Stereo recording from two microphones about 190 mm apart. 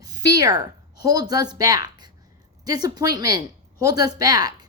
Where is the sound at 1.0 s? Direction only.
20° right (ahead or behind).